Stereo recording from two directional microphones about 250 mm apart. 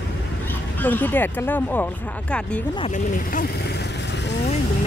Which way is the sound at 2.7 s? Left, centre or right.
Left.